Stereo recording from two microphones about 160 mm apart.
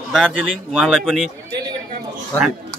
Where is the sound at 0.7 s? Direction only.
Centre (ahead or behind).